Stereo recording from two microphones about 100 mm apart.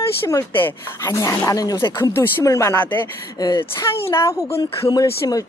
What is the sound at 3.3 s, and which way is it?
Speech, 40° left (ahead or behind).